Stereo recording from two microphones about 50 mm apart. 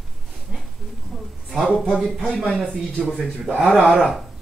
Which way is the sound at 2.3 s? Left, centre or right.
Centre.